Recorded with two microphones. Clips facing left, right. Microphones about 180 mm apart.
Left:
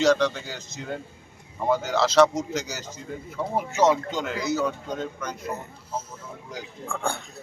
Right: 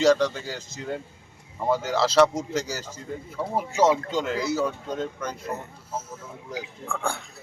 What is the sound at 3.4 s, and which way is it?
Speech, 5° right (ahead or behind).